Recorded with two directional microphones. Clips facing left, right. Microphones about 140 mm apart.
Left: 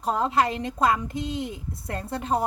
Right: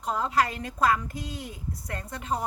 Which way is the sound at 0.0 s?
30° left (ahead or behind).